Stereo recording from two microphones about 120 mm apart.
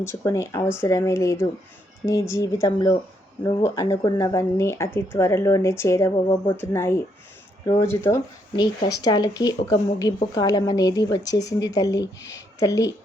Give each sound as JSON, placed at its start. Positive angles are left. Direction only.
{"t": 0.0, "sound": "speech", "side_deg": 25}
{"t": 8.5, "sound": "speech", "side_deg": 35}